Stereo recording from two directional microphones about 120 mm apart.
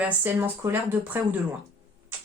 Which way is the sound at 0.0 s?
15° right (ahead or behind).